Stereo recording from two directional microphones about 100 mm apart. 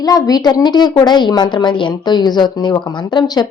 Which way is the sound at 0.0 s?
40° left (ahead or behind).